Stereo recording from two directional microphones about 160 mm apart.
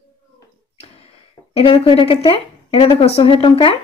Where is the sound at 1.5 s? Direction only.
35° left (ahead or behind).